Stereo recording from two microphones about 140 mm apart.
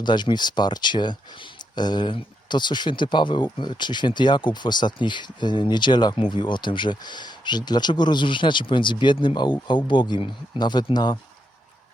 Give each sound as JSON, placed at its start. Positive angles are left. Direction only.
{"t": 0.0, "sound": "speech", "side_deg": 30}